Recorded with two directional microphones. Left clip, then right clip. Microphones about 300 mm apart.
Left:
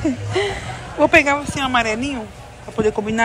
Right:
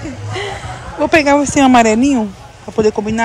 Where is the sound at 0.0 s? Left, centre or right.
Centre.